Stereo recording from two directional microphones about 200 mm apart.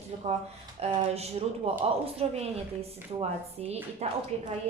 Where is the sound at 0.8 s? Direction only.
30° right (ahead or behind).